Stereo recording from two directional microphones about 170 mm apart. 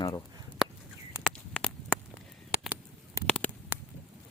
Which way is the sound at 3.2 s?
5° left (ahead or behind).